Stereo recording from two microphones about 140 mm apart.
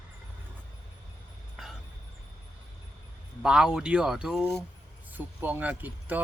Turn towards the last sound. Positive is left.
turn(degrees=-10)  # may be behind; listen again after turning